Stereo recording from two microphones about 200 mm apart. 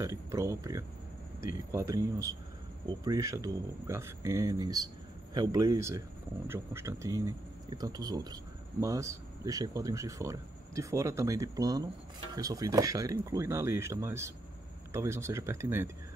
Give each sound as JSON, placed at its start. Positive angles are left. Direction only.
{"t": 0.0, "sound": "speech", "side_deg": -15}